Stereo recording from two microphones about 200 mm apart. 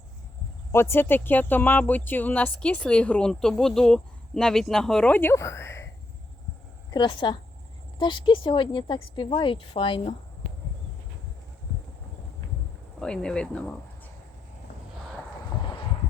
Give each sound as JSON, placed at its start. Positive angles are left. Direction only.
{"t": 0.7, "sound": "speech", "side_deg": 10}
{"t": 6.9, "sound": "speech", "side_deg": 20}
{"t": 13.0, "sound": "speech", "side_deg": 5}